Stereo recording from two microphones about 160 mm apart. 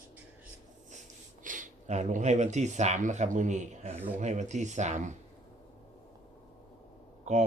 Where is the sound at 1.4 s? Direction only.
55° right (ahead or behind).